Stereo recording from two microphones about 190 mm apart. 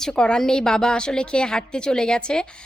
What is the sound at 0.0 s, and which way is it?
A woman's voice, 5° left (ahead or behind).